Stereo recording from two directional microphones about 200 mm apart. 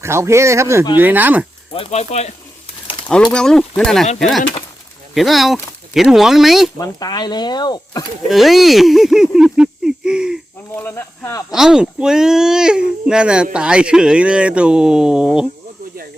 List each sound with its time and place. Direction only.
0.0 s speech: 15° right (ahead or behind)
1.7 s speech: 30° left (ahead or behind)
3.3 s speech: 5° left (ahead or behind)
6.7 s speech: 20° left (ahead or behind)
8.3 s speech: centre (ahead or behind)
10.8 s speech: 10° left (ahead or behind)
11.5 s speech: 5° right (ahead or behind)